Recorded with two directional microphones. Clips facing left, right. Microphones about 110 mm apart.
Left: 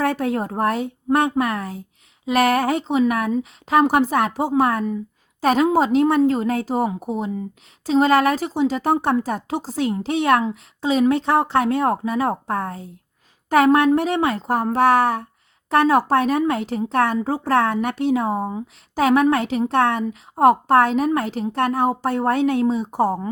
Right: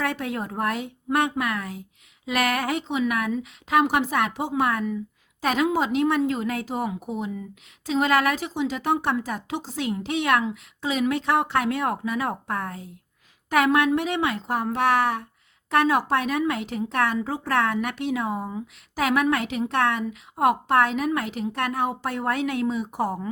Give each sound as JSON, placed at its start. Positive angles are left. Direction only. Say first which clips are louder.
{"t": 0.0, "sound": "speech", "louder": "left 6 dB", "side_deg": 40}